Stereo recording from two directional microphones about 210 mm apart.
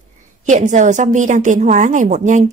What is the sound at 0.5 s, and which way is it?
A woman's voice, 35° right (ahead or behind).